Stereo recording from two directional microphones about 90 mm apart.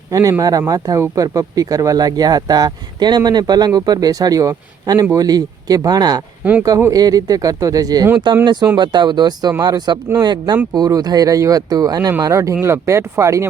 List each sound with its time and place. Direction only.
0.1 s speech: 40° right (ahead or behind)
6.6 s speech: 30° right (ahead or behind)
6.9 s speech: 45° right (ahead or behind)
8.3 s speech: 60° right (ahead or behind); by 13.5 s 30° right (ahead or behind)